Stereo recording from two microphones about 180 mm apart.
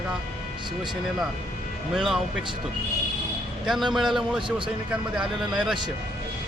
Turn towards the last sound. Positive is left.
turn(degrees=0)  # may be behind; listen again after turning